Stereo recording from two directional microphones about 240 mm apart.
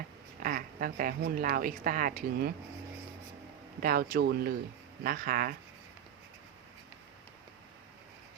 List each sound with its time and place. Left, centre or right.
0.3 s speech: right
3.8 s speech: right